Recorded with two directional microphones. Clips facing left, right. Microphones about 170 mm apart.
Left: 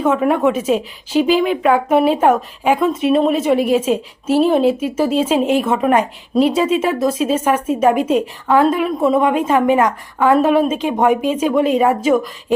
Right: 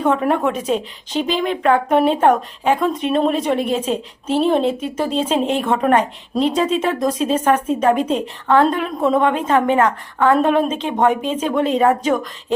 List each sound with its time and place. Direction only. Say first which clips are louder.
0.0 s a woman's voice: left 2 dB; 5° left (ahead or behind)